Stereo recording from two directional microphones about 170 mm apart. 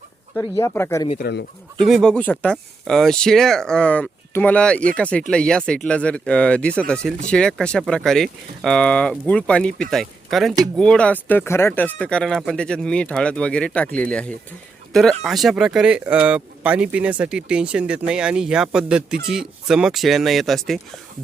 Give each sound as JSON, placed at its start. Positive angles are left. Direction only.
{"t": 0.3, "sound": "speech", "side_deg": 15}
{"t": 1.2, "sound": "speech", "side_deg": 80}
{"t": 1.9, "sound": "speech", "side_deg": 5}